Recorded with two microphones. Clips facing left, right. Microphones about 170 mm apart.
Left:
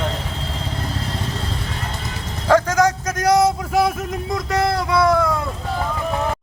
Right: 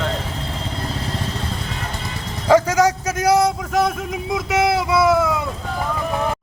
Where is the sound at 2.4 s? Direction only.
10° right (ahead or behind).